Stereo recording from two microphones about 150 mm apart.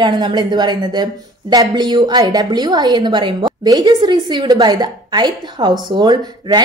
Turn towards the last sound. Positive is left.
turn(degrees=-25)  # may be behind; listen again after turning